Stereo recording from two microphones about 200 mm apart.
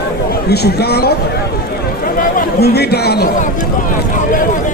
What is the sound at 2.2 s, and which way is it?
Speech, 50° left (ahead or behind).